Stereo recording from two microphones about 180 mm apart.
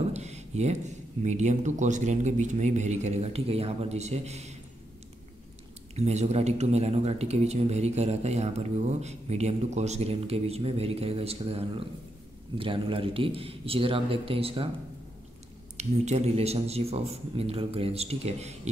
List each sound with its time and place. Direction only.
0.1 s speech: 40° right (ahead or behind)
5.9 s speech: 35° right (ahead or behind)
15.8 s speech: 35° right (ahead or behind)